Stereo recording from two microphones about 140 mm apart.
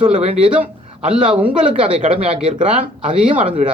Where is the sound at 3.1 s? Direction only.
65° right (ahead or behind).